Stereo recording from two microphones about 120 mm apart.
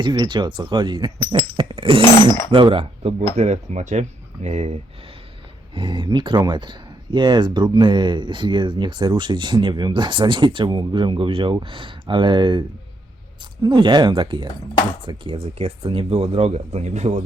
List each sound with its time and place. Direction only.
0.0 s speech: 40° right (ahead or behind); by 3.2 s 55° right (ahead or behind)
3.3 s speech: 70° right (ahead or behind)
4.4 s speech: 65° right (ahead or behind)
5.7 s speech: 45° right (ahead or behind); by 17.2 s 75° right (ahead or behind)